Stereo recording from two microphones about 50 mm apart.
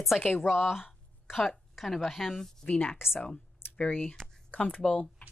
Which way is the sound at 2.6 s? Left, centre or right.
Left.